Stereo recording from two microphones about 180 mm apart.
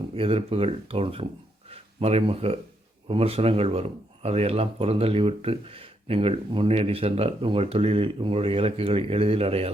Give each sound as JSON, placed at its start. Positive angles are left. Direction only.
{"t": 0.2, "sound": "speech", "side_deg": -30}